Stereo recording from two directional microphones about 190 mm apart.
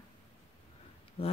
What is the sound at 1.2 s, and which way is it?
Speech, 30° left (ahead or behind).